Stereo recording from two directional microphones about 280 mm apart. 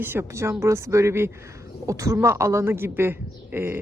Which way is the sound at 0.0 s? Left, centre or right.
Centre.